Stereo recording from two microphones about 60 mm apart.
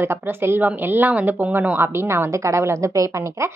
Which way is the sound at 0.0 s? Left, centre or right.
Right.